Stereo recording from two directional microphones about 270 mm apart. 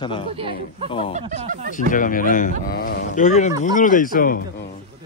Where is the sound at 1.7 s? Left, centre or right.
Left.